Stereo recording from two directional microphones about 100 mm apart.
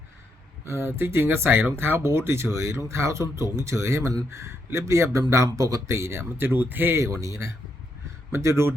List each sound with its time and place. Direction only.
0.6 s speech: 25° right (ahead or behind)